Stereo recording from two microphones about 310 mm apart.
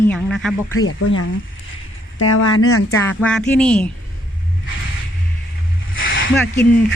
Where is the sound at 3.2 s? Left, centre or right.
Centre.